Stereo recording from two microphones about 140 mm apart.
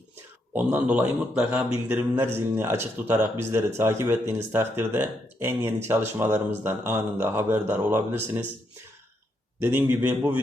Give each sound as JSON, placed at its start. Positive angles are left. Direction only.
{"t": 0.5, "sound": "speech", "side_deg": -10}
{"t": 9.6, "sound": "speech", "side_deg": -15}